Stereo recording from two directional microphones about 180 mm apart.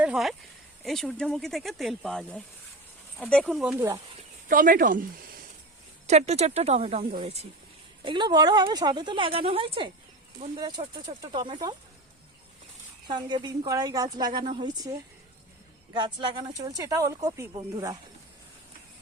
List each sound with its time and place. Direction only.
0.0 s speech: centre (ahead or behind)
4.4 s speech: 50° right (ahead or behind)
6.1 s speech: 35° right (ahead or behind)
13.1 s speech: 25° right (ahead or behind)